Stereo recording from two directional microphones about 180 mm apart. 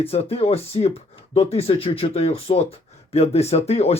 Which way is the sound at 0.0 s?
35° left (ahead or behind).